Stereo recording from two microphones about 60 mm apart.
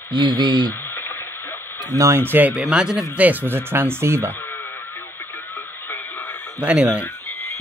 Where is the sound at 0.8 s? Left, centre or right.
Left.